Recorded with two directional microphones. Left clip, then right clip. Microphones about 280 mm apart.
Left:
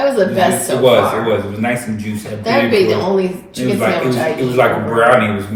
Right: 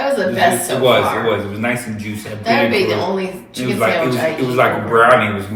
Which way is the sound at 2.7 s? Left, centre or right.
Centre.